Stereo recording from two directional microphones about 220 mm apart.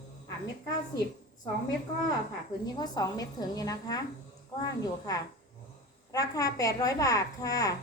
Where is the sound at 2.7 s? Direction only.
20° left (ahead or behind).